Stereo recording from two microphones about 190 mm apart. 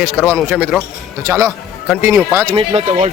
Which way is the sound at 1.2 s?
15° right (ahead or behind).